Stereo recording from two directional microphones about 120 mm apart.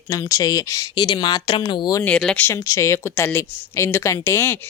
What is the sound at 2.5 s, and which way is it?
A woman's voice, 25° left (ahead or behind).